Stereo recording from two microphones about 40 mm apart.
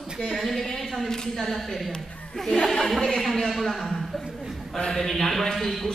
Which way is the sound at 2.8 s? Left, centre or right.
Centre.